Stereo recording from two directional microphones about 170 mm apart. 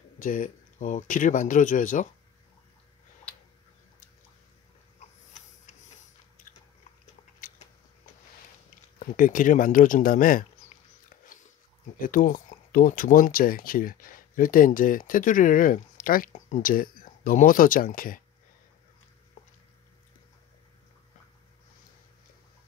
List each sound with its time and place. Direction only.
0.2 s speech: 50° left (ahead or behind)
7.3 s a sound: 55° left (ahead or behind)
9.0 s speech: 50° left (ahead or behind)
12.1 s speech: 55° left (ahead or behind)